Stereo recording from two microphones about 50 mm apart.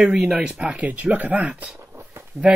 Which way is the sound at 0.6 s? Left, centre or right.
Right.